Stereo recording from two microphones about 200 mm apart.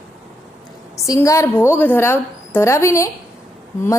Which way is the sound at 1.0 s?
15° left (ahead or behind).